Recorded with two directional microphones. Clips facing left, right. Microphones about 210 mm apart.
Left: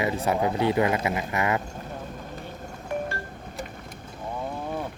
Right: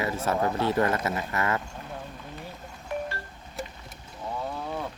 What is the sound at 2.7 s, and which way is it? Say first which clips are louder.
Music: left 3 dB; 50° left (ahead or behind).